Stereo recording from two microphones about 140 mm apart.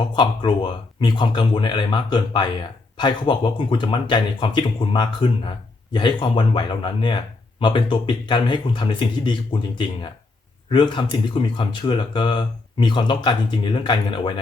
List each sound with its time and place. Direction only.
0.0 s speech: 35° left (ahead or behind)